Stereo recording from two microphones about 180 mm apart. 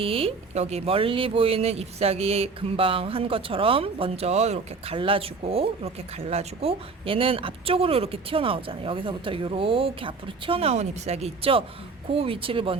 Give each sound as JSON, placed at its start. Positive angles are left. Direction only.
{"t": 0.0, "sound": "speech", "side_deg": -30}